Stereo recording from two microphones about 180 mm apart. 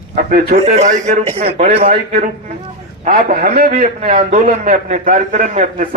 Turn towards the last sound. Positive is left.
turn(degrees=-45)  # may be behind; listen again after turning